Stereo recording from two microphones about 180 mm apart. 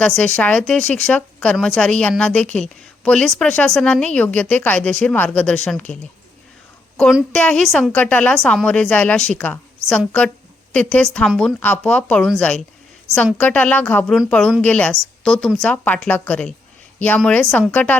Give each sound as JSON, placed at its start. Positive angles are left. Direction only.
{"t": 0.0, "sound": "a woman's voice", "side_deg": 5}
{"t": 7.0, "sound": "a woman's voice", "side_deg": 0}